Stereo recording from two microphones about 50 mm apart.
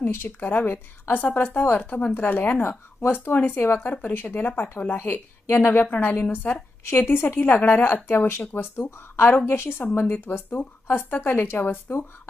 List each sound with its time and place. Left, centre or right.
0.0 s a woman's voice: left